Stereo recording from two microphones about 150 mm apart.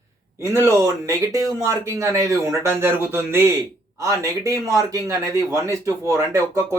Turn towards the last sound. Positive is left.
turn(degrees=-20)  # may be behind; listen again after turning